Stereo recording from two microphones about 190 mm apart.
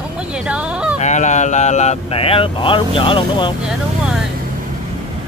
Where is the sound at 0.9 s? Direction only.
40° left (ahead or behind).